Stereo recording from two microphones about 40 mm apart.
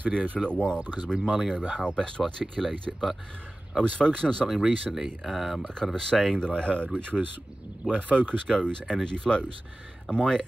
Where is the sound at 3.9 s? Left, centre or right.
Left.